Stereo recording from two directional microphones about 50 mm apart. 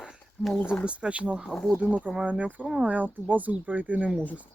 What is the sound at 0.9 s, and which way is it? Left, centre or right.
Speech, right.